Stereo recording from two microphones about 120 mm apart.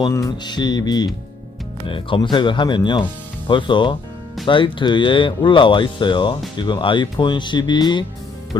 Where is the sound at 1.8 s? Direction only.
45° left (ahead or behind).